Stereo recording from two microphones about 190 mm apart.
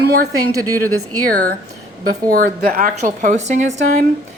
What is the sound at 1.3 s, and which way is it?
Speech, 50° right (ahead or behind).